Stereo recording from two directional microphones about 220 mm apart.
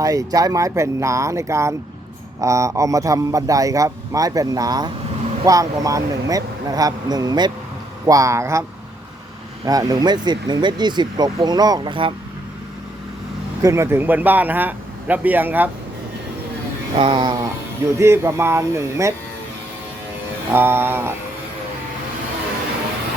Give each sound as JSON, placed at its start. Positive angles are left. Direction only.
{"t": 0.0, "sound": "a man's voice", "side_deg": -15}
{"t": 9.6, "sound": "speech", "side_deg": -15}
{"t": 13.6, "sound": "a man's voice", "side_deg": -15}
{"t": 16.9, "sound": "a man's voice", "side_deg": -20}
{"t": 20.5, "sound": "a man's voice", "side_deg": -10}